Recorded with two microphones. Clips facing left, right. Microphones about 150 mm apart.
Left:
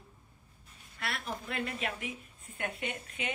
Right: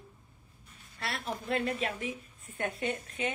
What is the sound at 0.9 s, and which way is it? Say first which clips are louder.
Speech: right 2 dB; 30° right (ahead or behind).